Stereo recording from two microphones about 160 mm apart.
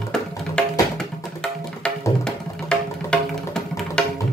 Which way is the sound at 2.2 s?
5° left (ahead or behind).